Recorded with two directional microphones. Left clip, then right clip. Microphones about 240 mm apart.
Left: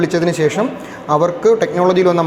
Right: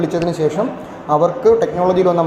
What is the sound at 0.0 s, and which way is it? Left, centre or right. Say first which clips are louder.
Speech: left 2 dB; left.